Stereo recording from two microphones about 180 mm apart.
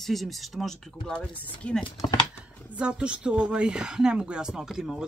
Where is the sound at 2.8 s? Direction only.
5° right (ahead or behind).